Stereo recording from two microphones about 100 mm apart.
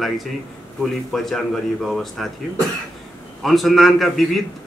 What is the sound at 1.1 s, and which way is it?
A man's voice, 5° left (ahead or behind).